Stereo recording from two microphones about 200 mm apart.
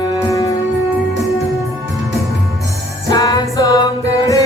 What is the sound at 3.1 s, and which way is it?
Music, 20° left (ahead or behind).